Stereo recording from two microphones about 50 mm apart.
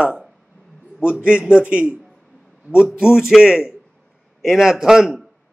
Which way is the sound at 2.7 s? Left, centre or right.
Centre.